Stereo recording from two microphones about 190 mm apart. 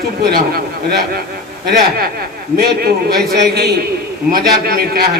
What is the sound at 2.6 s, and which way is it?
A man's voice, 55° right (ahead or behind).